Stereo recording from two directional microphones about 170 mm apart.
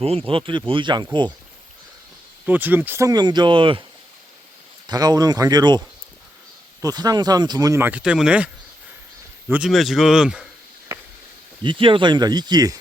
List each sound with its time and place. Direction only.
0.0 s speech: 35° right (ahead or behind)
2.5 s speech: 10° right (ahead or behind); by 3.8 s 30° right (ahead or behind)
4.9 s speech: 20° right (ahead or behind)
6.8 s speech: 20° right (ahead or behind); by 8.4 s 5° right (ahead or behind)
9.5 s a man's voice: 5° right (ahead or behind)
11.6 s speech: 30° right (ahead or behind)